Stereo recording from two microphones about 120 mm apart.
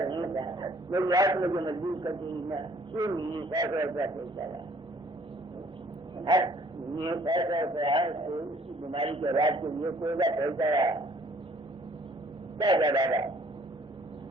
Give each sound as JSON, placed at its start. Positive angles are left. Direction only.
{"t": 0.0, "sound": "a man's voice", "side_deg": -35}
{"t": 6.2, "sound": "a man's voice", "side_deg": -40}
{"t": 12.5, "sound": "a man's voice", "side_deg": -35}